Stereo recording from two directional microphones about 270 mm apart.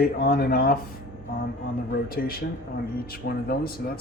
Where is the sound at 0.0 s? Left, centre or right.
Left.